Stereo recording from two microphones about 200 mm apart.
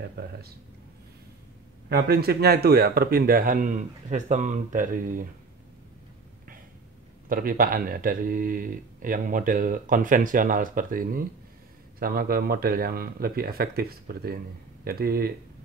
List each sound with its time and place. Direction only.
0.0 s speech: 55° right (ahead or behind)
1.9 s speech: 50° right (ahead or behind)
7.2 s speech: 45° right (ahead or behind)